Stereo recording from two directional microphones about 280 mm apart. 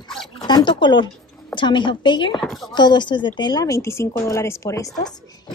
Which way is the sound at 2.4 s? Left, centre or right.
Centre.